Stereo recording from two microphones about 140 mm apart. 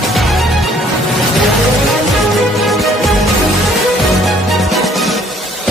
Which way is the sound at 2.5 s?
Centre (ahead or behind).